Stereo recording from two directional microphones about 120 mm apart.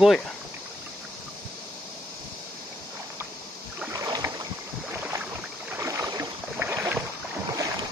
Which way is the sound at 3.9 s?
25° right (ahead or behind).